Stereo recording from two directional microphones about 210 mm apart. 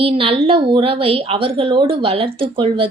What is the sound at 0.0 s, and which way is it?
A woman's voice, 25° right (ahead or behind).